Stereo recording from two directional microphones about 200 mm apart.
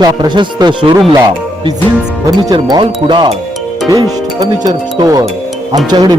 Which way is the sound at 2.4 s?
20° right (ahead or behind).